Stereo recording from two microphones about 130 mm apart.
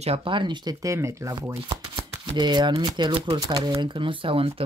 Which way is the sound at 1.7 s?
35° right (ahead or behind).